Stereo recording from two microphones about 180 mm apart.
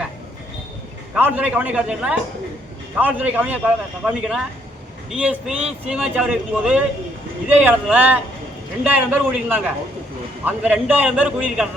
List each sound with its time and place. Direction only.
1.1 s a man's voice: 10° right (ahead or behind)